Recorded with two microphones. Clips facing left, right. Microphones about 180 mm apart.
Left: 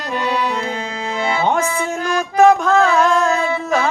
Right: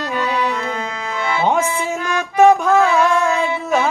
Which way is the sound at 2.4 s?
5° right (ahead or behind).